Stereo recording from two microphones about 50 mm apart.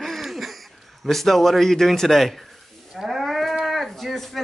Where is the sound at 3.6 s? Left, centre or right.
Centre.